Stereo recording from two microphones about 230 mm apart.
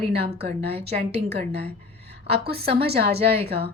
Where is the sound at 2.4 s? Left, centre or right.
Right.